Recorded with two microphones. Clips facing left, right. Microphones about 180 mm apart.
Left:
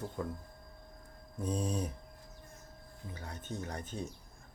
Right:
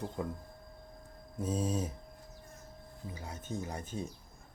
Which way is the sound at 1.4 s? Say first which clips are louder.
Right 1 dB; 5° right (ahead or behind).